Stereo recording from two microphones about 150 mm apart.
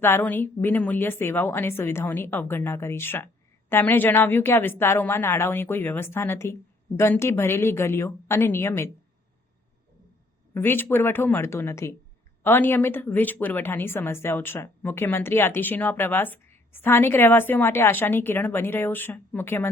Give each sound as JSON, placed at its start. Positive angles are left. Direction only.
{"t": 0.0, "sound": "a woman's voice", "side_deg": 15}
{"t": 10.5, "sound": "a woman's voice", "side_deg": 15}